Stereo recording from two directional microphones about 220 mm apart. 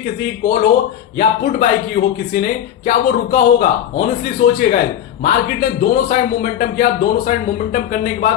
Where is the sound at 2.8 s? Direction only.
35° left (ahead or behind).